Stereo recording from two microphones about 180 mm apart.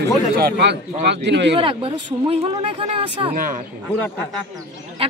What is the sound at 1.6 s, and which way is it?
Speech, 30° right (ahead or behind).